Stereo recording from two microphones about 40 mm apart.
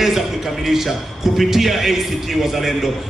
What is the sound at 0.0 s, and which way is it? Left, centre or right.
A man's voice, centre.